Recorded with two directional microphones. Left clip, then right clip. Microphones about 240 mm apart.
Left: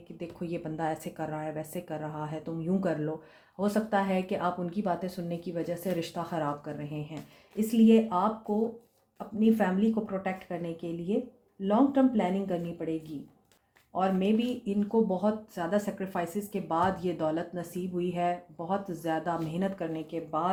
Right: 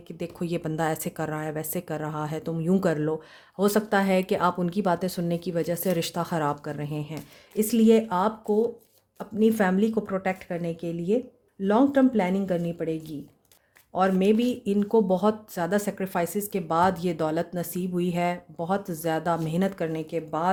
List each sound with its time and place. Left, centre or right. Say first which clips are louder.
0.2 s speech: right 6 dB; right